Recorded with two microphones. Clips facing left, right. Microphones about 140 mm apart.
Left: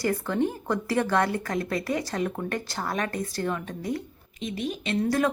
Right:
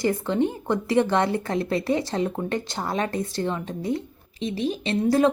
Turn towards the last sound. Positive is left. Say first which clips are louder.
# right 4 dB
turn(degrees=-30)  # may be behind; listen again after turning